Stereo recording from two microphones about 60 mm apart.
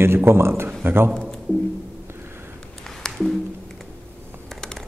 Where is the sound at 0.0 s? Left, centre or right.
Right.